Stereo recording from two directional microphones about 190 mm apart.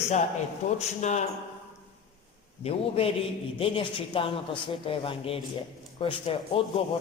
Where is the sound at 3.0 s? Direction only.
30° left (ahead or behind).